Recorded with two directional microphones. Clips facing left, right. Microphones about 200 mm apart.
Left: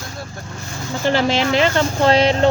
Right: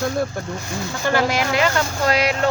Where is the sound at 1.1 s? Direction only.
25° left (ahead or behind).